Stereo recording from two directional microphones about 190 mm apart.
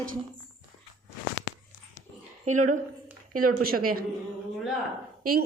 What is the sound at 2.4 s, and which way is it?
A woman's voice, 40° right (ahead or behind).